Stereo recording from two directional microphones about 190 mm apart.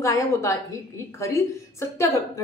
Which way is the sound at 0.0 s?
15° left (ahead or behind).